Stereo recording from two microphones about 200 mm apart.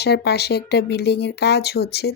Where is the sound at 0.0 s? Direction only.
55° left (ahead or behind).